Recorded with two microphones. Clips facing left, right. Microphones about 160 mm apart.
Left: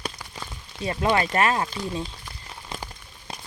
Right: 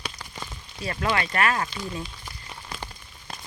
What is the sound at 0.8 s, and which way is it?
Speech, 20° left (ahead or behind).